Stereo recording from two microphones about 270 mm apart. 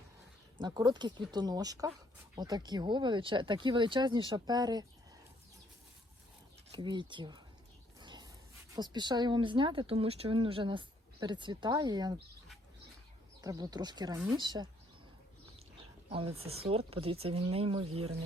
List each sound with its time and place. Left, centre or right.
0.6 s speech: centre
6.7 s speech: centre
7.9 s a sound: centre
8.7 s speech: centre
13.4 s speech: centre
16.0 s speech: right